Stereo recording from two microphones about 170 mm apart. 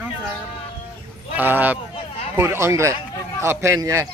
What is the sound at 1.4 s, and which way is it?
Speech, 10° right (ahead or behind).